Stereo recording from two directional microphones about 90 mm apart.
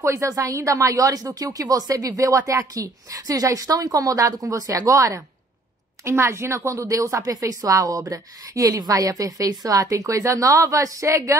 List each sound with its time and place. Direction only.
0.0 s speech: 35° right (ahead or behind)